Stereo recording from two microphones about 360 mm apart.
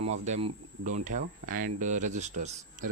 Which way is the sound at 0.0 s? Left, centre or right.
Centre.